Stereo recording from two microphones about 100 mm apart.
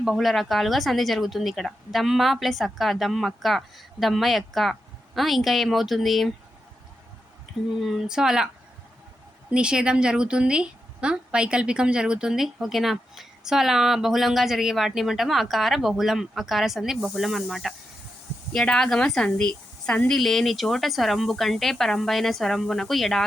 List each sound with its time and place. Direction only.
0.0 s a woman's voice: centre (ahead or behind)
7.8 s a woman's voice: centre (ahead or behind)
9.5 s a woman's voice: 10° right (ahead or behind)